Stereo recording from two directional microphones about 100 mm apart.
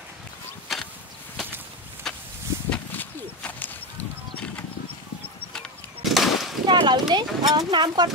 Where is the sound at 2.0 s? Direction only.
5° left (ahead or behind).